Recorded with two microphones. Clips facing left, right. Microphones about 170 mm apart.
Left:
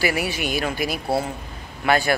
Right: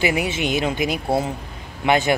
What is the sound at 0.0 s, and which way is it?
A man's voice, 20° right (ahead or behind).